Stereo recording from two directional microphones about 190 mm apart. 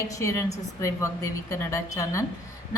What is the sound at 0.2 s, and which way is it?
A woman's voice, 15° left (ahead or behind).